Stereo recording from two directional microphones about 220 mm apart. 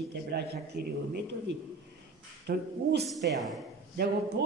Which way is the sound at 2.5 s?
45° right (ahead or behind).